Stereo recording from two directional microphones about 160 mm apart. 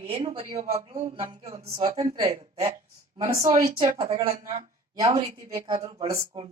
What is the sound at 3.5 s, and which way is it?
Speech, 55° right (ahead or behind).